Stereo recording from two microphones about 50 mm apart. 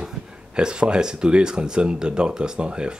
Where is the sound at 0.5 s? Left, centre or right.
Centre.